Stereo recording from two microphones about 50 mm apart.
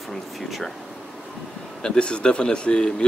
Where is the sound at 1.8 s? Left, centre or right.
Centre.